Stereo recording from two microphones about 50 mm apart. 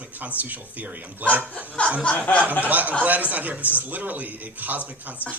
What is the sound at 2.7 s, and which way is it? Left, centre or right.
Speech, right.